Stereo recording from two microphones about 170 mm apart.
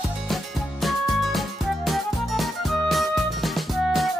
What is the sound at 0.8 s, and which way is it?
Music, centre (ahead or behind).